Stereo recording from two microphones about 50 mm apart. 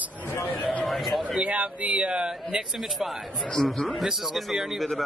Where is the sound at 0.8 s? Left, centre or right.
Centre.